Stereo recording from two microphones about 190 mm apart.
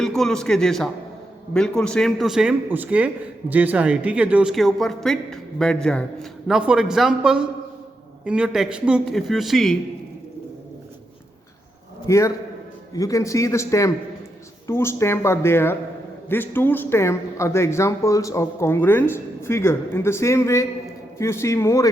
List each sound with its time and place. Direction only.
0.0 s speech: centre (ahead or behind)
12.0 s a man's voice: 15° left (ahead or behind)